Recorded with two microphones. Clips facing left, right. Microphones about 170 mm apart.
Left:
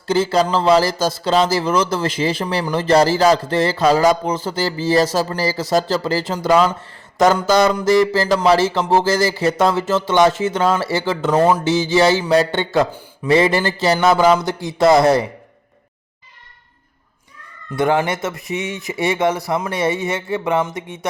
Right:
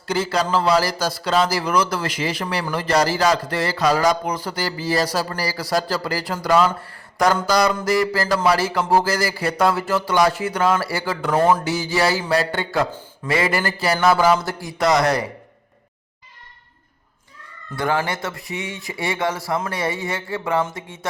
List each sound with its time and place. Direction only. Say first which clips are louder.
0.1 s speech: left 4 dB; 25° left (ahead or behind)
17.7 s speech: left 5 dB; 20° left (ahead or behind)